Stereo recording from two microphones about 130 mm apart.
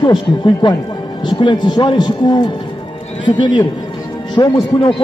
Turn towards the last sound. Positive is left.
turn(degrees=40)  # may be behind; listen again after turning